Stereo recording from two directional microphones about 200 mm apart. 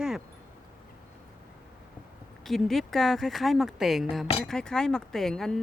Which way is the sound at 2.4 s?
Centre (ahead or behind).